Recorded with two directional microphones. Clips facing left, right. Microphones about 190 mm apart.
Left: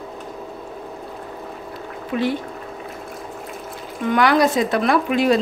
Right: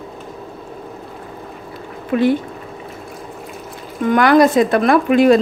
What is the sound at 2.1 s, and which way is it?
Speech, 55° right (ahead or behind).